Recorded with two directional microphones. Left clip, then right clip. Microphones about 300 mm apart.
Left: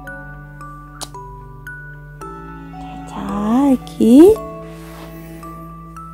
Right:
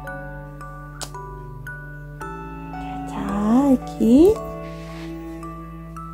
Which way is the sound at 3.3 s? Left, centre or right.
Left.